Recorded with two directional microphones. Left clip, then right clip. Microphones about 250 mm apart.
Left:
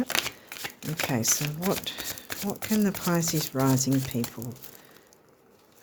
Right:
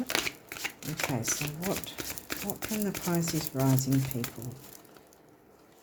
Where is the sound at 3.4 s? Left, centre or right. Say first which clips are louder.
Left 4 dB; left.